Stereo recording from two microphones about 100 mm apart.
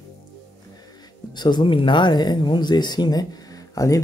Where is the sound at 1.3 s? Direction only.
50° left (ahead or behind).